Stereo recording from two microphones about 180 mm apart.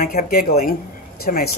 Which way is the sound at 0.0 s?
50° left (ahead or behind).